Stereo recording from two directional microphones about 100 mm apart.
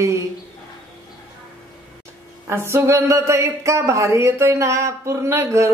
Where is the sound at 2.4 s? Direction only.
25° right (ahead or behind).